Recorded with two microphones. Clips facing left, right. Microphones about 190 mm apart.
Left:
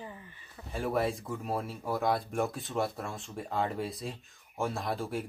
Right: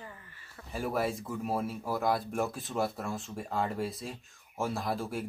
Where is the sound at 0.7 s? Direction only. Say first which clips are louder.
Left 1 dB; centre (ahead or behind).